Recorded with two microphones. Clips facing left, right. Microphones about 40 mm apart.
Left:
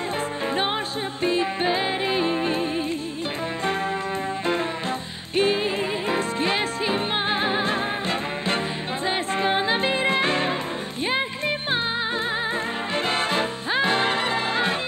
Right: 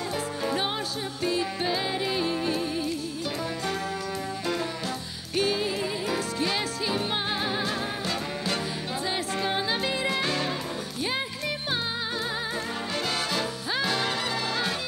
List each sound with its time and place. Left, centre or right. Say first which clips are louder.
1.2 s music: left 5 dB; left
5.3 s music: left 5 dB; left
12.9 s music: left 6 dB; left